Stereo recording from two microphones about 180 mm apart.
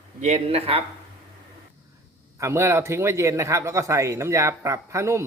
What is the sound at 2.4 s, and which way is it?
Speech, 15° right (ahead or behind).